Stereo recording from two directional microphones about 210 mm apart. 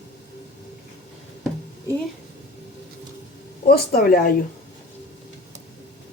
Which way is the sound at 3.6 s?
45° left (ahead or behind).